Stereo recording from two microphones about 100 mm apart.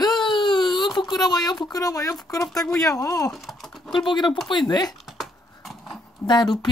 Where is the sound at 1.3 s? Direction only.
45° left (ahead or behind).